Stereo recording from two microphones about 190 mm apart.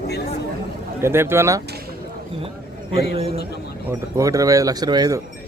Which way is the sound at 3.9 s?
15° right (ahead or behind).